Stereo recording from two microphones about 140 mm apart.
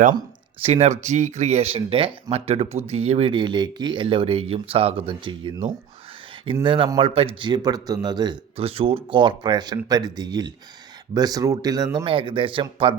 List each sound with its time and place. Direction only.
0.6 s speech: 55° right (ahead or behind); by 8.4 s 30° right (ahead or behind)
8.5 s speech: 45° right (ahead or behind); by 11.9 s 25° right (ahead or behind)
11.9 s speech: 40° right (ahead or behind)